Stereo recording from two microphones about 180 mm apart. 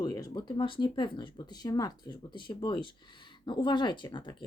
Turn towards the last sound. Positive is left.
turn(degrees=25)  # may be behind; listen again after turning